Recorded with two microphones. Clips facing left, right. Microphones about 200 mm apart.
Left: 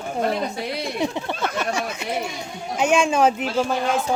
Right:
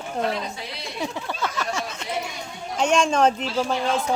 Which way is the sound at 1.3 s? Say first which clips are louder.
Left 3 dB; 60° left (ahead or behind).